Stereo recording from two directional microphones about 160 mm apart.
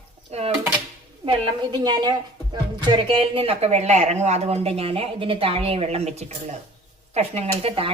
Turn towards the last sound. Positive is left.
turn(degrees=-35)  # may be behind; listen again after turning